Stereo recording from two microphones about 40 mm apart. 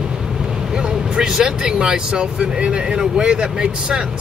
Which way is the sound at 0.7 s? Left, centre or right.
Right.